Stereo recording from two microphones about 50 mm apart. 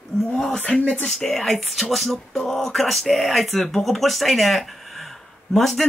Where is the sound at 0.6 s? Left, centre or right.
Centre.